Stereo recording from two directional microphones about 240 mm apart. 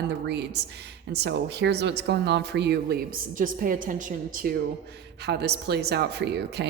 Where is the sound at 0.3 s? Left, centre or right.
Right.